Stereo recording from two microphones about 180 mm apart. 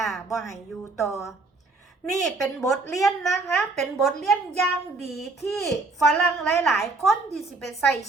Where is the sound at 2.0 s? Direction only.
Centre (ahead or behind).